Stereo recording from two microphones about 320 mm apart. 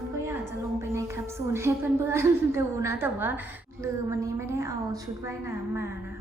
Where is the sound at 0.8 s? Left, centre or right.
Centre.